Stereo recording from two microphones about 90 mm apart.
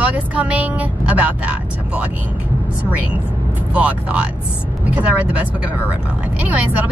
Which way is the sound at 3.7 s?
15° right (ahead or behind).